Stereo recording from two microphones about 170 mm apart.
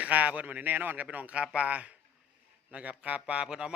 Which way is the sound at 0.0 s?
10° right (ahead or behind).